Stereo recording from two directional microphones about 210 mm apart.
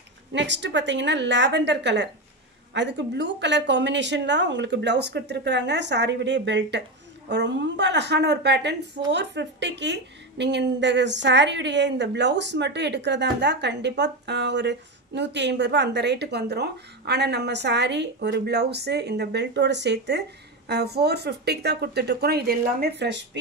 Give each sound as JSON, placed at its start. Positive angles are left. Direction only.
{"t": 0.3, "sound": "a woman's voice", "side_deg": -55}